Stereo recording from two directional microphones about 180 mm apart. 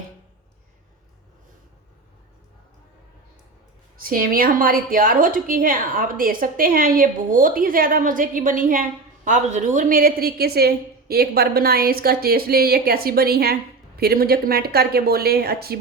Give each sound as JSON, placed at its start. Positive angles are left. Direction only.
{"t": 3.9, "sound": "a woman's voice", "side_deg": -55}